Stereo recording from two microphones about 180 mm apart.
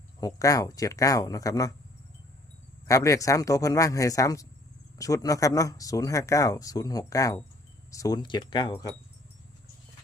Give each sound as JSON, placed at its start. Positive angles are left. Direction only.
{"t": 0.2, "sound": "speech", "side_deg": 20}
{"t": 2.8, "sound": "speech", "side_deg": 20}